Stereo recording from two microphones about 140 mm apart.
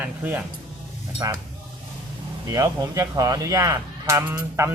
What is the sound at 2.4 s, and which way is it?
Speech, 25° right (ahead or behind).